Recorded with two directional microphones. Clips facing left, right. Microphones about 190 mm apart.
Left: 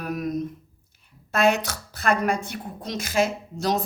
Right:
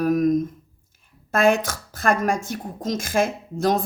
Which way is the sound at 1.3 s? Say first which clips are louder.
Right 3 dB; 50° right (ahead or behind).